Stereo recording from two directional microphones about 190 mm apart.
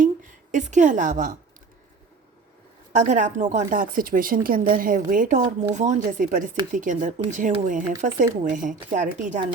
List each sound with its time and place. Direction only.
0.0 s a woman's voice: 40° right (ahead or behind)
3.0 s speech: 40° right (ahead or behind)